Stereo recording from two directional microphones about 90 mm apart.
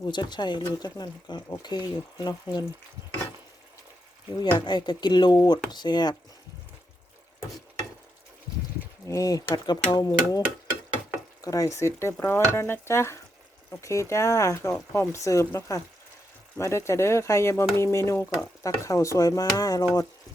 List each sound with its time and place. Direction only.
0.0 s speech: 55° left (ahead or behind)
4.4 s speech: 55° left (ahead or behind)
9.0 s speech: 40° left (ahead or behind)
11.4 s speech: 40° left (ahead or behind)